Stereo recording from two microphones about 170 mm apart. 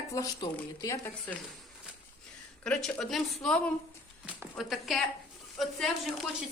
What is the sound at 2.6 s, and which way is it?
A woman's voice, 5° left (ahead or behind).